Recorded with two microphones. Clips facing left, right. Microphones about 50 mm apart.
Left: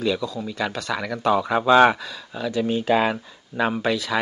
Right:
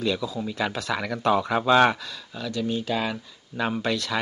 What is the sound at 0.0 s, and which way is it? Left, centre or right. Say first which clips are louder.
Speech: left 2 dB; centre.